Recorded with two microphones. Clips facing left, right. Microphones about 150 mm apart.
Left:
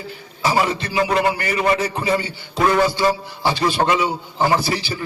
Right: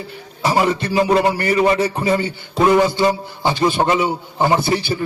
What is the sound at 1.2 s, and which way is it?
A man's voice, 25° right (ahead or behind).